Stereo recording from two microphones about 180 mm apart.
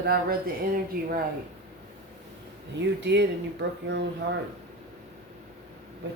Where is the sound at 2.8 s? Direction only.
75° right (ahead or behind).